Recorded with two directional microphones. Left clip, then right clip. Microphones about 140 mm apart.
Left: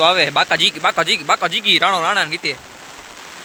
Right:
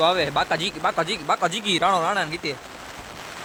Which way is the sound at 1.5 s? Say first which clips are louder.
Left 7 dB; 15° right (ahead or behind).